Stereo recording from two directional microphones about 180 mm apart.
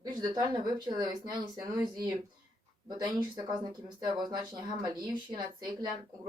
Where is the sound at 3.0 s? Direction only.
25° right (ahead or behind).